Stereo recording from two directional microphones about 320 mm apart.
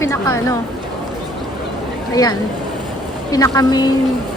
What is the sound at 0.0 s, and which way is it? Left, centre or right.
Speech, centre.